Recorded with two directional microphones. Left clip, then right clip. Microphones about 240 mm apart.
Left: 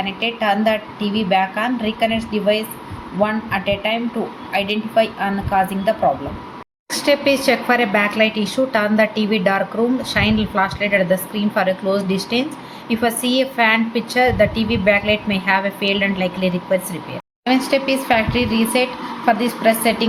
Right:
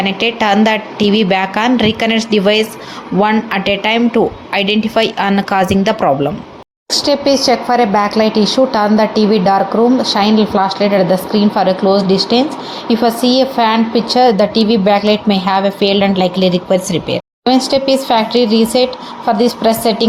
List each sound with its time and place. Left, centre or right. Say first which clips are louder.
0.0 s a woman's voice: right 6 dB; right
6.9 s a woman's voice: right 4 dB; centre